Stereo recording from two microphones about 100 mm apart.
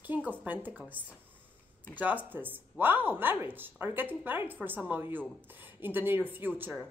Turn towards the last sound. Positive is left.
turn(degrees=-20)  # may be behind; listen again after turning